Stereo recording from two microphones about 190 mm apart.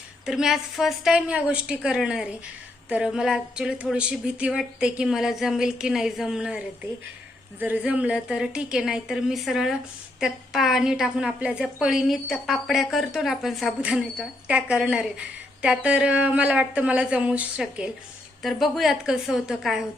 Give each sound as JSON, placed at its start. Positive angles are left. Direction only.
{"t": 0.3, "sound": "a woman's voice", "side_deg": -5}
{"t": 7.6, "sound": "a woman's voice", "side_deg": -10}